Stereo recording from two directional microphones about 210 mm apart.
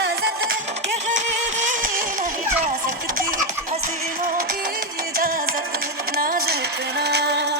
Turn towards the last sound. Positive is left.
turn(degrees=-50)  # may be behind; listen again after turning